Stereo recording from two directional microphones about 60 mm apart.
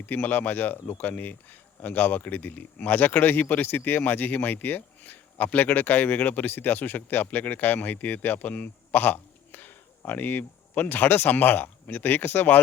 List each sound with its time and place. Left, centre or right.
0.0 s speech: left